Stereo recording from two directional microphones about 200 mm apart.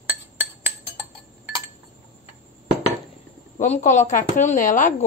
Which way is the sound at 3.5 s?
35° left (ahead or behind).